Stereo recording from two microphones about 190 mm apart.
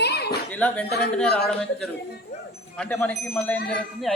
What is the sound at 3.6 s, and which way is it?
Music, 65° left (ahead or behind).